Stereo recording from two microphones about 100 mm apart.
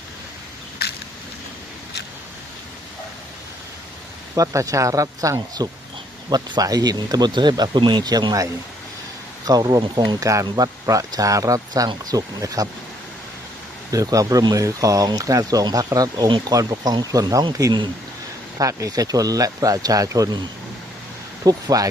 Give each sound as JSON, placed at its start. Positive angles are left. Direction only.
{"t": 4.4, "sound": "speech", "side_deg": -35}
{"t": 9.5, "sound": "speech", "side_deg": -40}
{"t": 13.9, "sound": "speech", "side_deg": -35}
{"t": 17.6, "sound": "speech", "side_deg": -45}
{"t": 18.6, "sound": "speech", "side_deg": -35}
{"t": 21.4, "sound": "speech", "side_deg": -35}